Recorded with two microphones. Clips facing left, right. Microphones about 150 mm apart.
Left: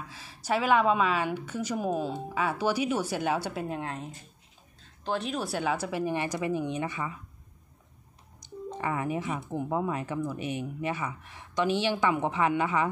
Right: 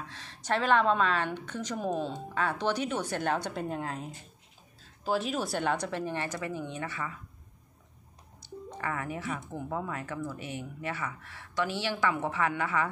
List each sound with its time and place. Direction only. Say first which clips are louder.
0.0 s a woman's voice: left 1 dB; 10° left (ahead or behind)
8.4 s a sound: left 4 dB; 20° left (ahead or behind)
9.5 s speech: left 5 dB; 20° left (ahead or behind)